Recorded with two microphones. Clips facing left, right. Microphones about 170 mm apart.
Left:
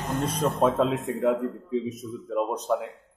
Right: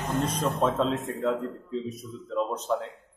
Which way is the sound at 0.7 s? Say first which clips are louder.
Left 2 dB; 15° left (ahead or behind).